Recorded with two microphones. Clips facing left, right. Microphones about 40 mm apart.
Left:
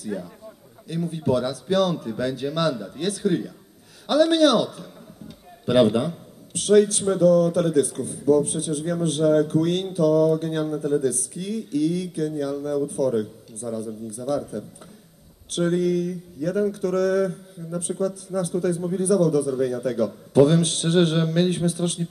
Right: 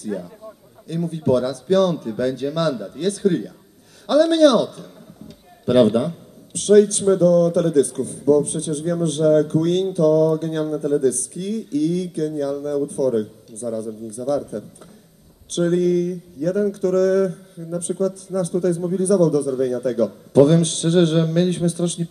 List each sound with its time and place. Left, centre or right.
0.9 s a man's voice: left
4.1 s a man's voice: left